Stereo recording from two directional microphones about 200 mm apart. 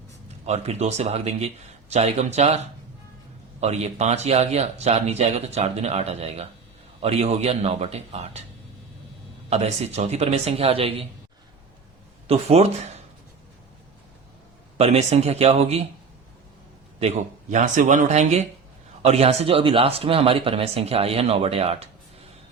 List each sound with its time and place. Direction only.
0.4 s speech: 35° right (ahead or behind)
9.5 s speech: 30° right (ahead or behind)
12.3 s speech: 30° right (ahead or behind)
14.8 s speech: 30° right (ahead or behind)
17.0 s speech: 35° right (ahead or behind)